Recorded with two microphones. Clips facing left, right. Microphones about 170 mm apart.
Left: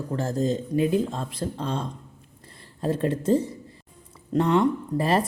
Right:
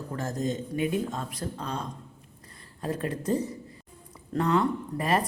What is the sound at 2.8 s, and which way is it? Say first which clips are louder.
Speech: left 6 dB; 30° left (ahead or behind).